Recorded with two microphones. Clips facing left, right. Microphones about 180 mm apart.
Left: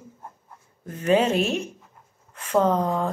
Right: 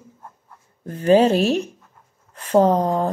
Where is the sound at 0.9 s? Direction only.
35° right (ahead or behind).